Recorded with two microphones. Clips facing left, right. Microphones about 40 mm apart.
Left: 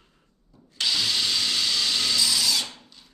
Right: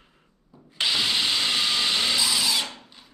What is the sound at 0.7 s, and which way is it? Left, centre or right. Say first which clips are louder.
Drill: right 2 dB; right.